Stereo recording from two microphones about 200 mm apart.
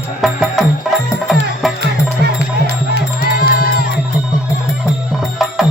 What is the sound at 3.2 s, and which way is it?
Music, 50° left (ahead or behind).